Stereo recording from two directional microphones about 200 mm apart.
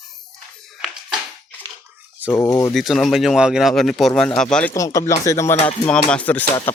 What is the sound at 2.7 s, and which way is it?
Speech, centre (ahead or behind).